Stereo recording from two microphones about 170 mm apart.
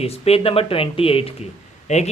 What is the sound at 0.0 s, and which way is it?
A man's voice, 35° left (ahead or behind).